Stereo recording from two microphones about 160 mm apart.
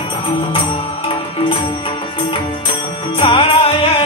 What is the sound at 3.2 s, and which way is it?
Music, 35° left (ahead or behind).